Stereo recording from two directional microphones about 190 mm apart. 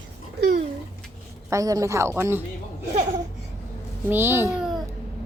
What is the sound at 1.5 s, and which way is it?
Speech, 15° right (ahead or behind).